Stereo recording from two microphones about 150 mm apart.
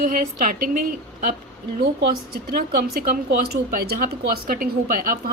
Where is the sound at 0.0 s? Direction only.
65° right (ahead or behind).